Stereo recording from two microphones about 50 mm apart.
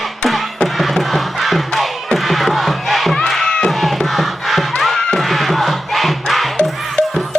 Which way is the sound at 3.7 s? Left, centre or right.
Centre.